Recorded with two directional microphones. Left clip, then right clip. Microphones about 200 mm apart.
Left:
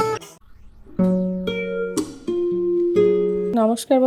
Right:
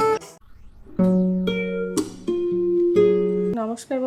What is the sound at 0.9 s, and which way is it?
Music, centre (ahead or behind).